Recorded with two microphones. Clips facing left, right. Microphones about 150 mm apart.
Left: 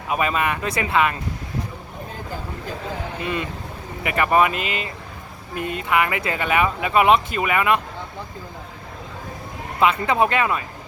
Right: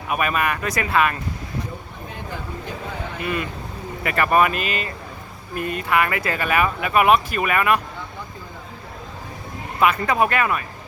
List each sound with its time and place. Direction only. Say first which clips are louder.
0.1 s speech: even; 20° left (ahead or behind)
3.2 s speech: right 2 dB; 25° left (ahead or behind)
9.8 s speech: even; 25° left (ahead or behind)